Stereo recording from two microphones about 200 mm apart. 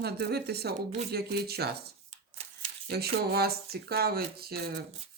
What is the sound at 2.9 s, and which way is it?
Speech, 50° right (ahead or behind).